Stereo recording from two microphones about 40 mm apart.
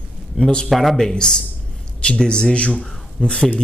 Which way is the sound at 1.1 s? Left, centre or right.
Left.